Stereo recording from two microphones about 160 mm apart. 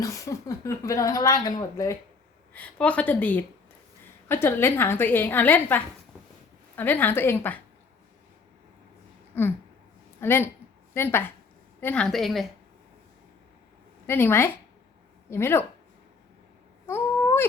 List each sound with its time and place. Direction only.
0.0 s speech: 20° left (ahead or behind)
2.5 s a woman's voice: 10° left (ahead or behind)
9.3 s a sound: 15° left (ahead or behind)
10.2 s a woman's voice: 15° left (ahead or behind)
14.1 s a woman's voice: 15° left (ahead or behind)
16.8 s a sound: 15° left (ahead or behind)